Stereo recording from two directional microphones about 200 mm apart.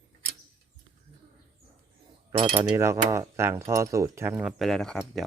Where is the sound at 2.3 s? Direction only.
25° right (ahead or behind).